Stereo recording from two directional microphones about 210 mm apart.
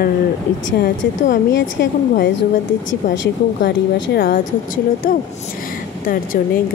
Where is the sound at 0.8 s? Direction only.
60° left (ahead or behind).